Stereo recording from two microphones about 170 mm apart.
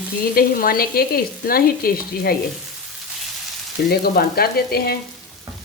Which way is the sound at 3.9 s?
65° left (ahead or behind).